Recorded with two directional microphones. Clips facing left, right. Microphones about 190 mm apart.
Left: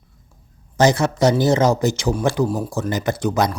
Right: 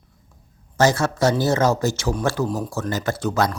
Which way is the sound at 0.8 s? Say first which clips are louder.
Left 2 dB; 15° left (ahead or behind).